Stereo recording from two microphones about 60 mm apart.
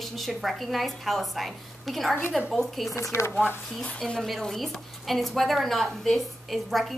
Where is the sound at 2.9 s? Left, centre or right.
Left.